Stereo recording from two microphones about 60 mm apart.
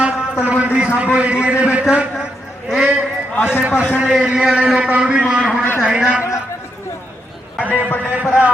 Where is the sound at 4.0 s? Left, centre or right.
Centre.